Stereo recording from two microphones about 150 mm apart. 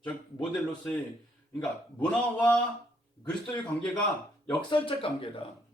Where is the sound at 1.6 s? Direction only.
10° left (ahead or behind).